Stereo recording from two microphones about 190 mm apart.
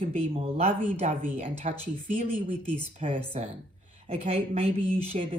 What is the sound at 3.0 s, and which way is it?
Speech, 35° right (ahead or behind).